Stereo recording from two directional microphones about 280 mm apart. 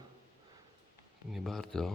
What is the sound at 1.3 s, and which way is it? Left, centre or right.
Speech, centre.